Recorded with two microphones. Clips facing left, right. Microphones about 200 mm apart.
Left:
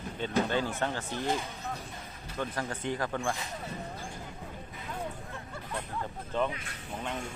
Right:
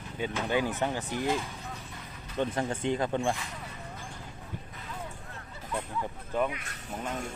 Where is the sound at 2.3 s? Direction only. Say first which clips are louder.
Right 5 dB; 25° right (ahead or behind).